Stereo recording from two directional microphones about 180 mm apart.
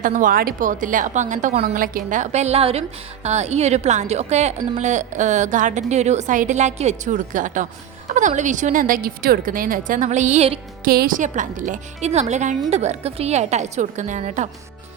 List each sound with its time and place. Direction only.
0.0 s a woman's voice: 50° right (ahead or behind)
10.8 s a woman's voice: 55° right (ahead or behind)